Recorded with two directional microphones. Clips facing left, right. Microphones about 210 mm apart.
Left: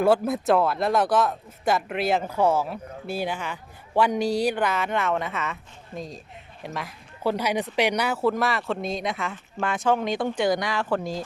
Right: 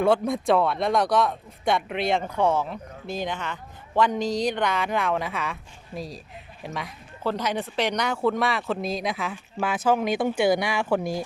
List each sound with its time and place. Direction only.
0.0 s speech: 5° left (ahead or behind)
7.3 s speech: 10° left (ahead or behind); by 11.2 s 10° right (ahead or behind)